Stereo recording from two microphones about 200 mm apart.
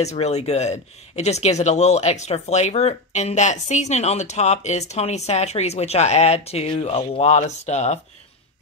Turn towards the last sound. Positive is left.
turn(degrees=35)  # may be behind; listen again after turning